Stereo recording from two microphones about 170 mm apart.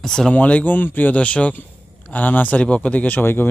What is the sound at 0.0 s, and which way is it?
Speech, 5° left (ahead or behind).